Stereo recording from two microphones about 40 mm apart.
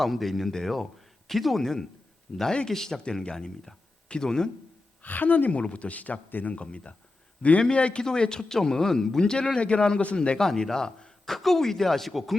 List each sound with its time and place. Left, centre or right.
0.0 s speech: centre
2.3 s a man's voice: left
2.6 s speech: centre
5.0 s speech: left
5.5 s a man's voice: left
8.0 s a man's voice: centre
11.3 s speech: centre